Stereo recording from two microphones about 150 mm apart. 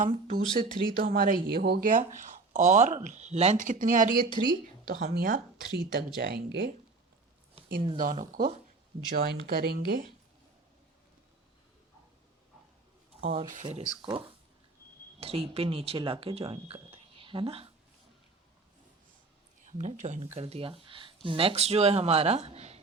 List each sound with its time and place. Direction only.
0.0 s speech: 65° right (ahead or behind)
4.9 s speech: 90° right
7.9 s speech: 60° right (ahead or behind)
9.1 s speech: 90° right
13.7 s speech: 35° right (ahead or behind)
15.2 s speech: 40° right (ahead or behind)
19.6 s speech: 55° right (ahead or behind)
20.3 s speech: 40° right (ahead or behind)